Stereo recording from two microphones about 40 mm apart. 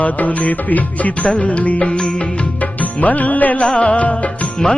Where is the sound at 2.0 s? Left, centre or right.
Centre.